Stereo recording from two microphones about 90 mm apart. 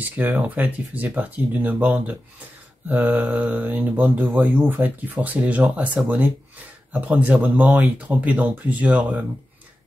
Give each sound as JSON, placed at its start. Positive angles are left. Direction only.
{"t": 0.0, "sound": "speech", "side_deg": -20}
{"t": 2.9, "sound": "speech", "side_deg": -15}